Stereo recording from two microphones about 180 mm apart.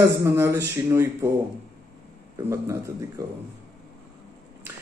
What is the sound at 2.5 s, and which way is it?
Speech, 15° right (ahead or behind).